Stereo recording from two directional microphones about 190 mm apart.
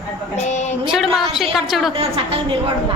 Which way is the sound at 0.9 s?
Centre (ahead or behind).